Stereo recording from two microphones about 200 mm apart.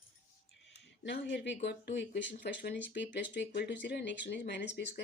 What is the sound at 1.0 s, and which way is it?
Speech, 60° left (ahead or behind).